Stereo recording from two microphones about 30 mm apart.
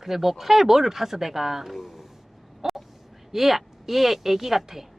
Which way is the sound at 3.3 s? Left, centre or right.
Centre.